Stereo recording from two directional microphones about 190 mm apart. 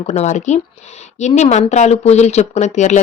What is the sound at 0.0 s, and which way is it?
A woman's voice, 35° left (ahead or behind).